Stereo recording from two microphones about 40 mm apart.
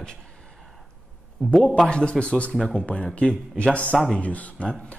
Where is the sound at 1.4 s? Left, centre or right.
Right.